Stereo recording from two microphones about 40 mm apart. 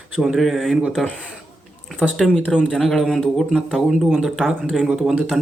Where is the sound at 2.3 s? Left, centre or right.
Left.